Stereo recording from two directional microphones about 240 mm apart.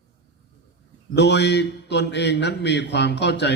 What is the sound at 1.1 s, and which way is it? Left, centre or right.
A man's voice, left.